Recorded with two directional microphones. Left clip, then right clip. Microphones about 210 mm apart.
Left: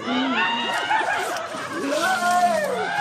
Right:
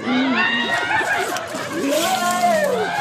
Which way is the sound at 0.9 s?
55° right (ahead or behind).